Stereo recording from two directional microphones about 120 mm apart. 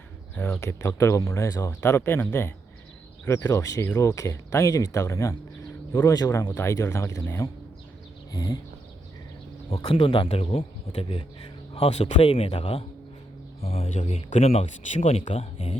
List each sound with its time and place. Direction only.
0.3 s speech: 20° left (ahead or behind)
8.3 s a sound: 30° left (ahead or behind)
9.6 s speech: 50° left (ahead or behind); by 15.3 s 80° left
15.3 s speech: 55° left (ahead or behind)